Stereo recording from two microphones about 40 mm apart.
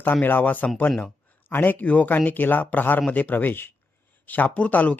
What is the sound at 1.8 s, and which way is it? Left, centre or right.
Speech, left.